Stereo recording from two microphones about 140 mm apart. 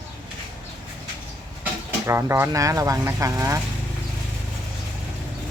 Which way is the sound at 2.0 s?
20° right (ahead or behind).